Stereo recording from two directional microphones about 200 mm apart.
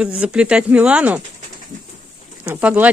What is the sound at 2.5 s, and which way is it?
Speech, 10° right (ahead or behind).